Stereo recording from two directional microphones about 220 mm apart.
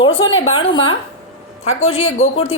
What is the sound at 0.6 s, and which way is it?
A woman's voice, 25° left (ahead or behind).